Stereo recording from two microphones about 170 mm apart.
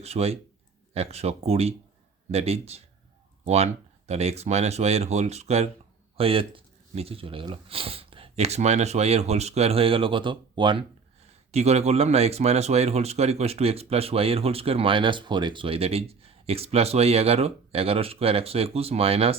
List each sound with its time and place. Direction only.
0.0 s speech: 35° right (ahead or behind)
11.5 s speech: 40° right (ahead or behind)